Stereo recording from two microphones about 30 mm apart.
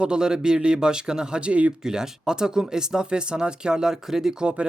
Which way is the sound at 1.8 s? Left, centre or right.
Right.